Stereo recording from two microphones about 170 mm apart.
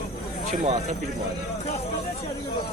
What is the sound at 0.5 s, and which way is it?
Speech, 45° right (ahead or behind).